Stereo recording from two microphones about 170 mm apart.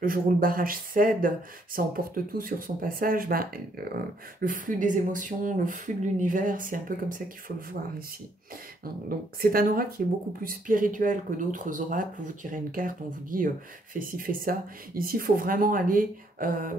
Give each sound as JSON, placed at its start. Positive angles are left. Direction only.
{"t": 0.0, "sound": "speech", "side_deg": -55}
{"t": 9.4, "sound": "speech", "side_deg": -55}